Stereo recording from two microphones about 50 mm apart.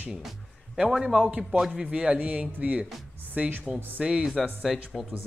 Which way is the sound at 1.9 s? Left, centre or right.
Right.